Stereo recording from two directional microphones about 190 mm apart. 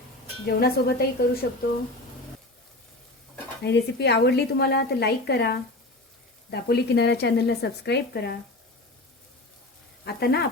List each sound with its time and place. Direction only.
0.4 s a woman's voice: 55° left (ahead or behind)
3.6 s a woman's voice: 65° left (ahead or behind)
10.0 s speech: 55° left (ahead or behind)